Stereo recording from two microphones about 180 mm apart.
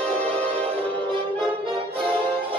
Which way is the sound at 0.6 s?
35° right (ahead or behind).